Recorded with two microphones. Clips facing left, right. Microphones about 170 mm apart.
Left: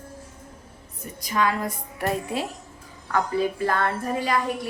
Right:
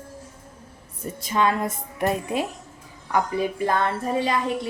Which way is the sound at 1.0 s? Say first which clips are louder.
Right 2 dB; 25° right (ahead or behind).